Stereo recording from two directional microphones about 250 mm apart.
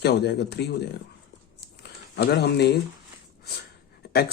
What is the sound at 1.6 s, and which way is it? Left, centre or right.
Crumpling, left.